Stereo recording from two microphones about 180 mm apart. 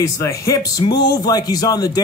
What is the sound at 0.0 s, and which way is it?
A man's voice, 20° left (ahead or behind).